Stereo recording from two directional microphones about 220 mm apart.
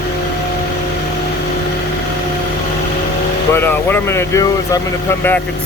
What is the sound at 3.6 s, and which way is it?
Speech, 10° left (ahead or behind).